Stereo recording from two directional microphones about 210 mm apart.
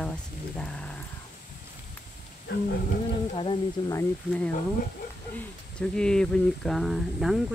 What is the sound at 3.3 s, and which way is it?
Speech, 25° left (ahead or behind).